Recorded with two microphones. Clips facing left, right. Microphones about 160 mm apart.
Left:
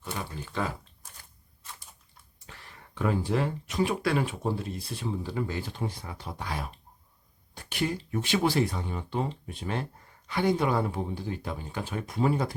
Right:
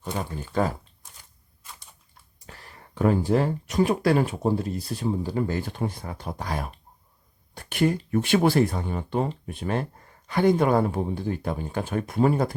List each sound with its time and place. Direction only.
0.0 s speech: 45° right (ahead or behind)
2.5 s speech: 40° right (ahead or behind)